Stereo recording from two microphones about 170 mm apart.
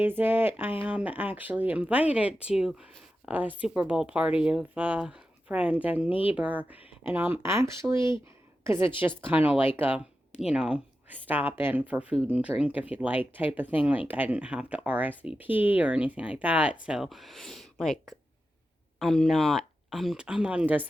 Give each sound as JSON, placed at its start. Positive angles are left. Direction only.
{"t": 0.0, "sound": "a woman's voice", "side_deg": -10}